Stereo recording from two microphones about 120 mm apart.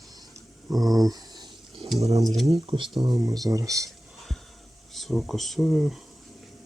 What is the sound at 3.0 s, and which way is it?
Speech, 30° right (ahead or behind).